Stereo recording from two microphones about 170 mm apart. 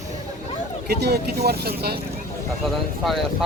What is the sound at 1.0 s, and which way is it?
Speech, 75° right (ahead or behind).